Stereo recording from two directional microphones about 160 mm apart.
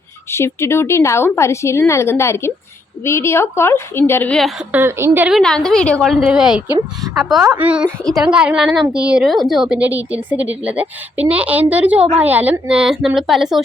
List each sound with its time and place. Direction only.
0.3 s a woman's voice: 15° left (ahead or behind)
4.7 s a woman's voice: 15° right (ahead or behind)
5.3 s a woman's voice: 5° left (ahead or behind)